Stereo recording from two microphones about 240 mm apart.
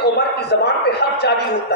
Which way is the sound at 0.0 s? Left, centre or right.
Left.